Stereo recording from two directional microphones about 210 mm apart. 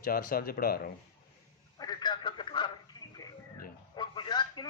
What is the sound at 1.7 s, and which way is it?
Telephone, 20° left (ahead or behind).